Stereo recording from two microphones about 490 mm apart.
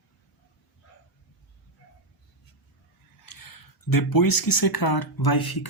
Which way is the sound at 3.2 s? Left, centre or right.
Left.